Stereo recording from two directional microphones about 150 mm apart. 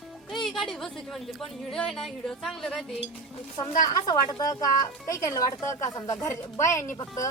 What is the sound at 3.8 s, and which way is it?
Speech, 25° left (ahead or behind).